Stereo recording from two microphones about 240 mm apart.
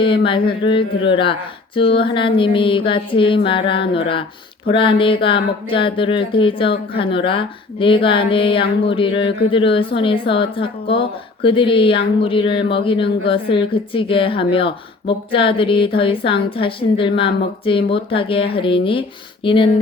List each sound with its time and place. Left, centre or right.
0.3 s a woman's voice: left